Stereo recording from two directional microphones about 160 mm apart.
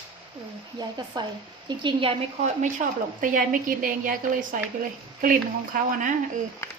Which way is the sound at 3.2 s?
55° right (ahead or behind).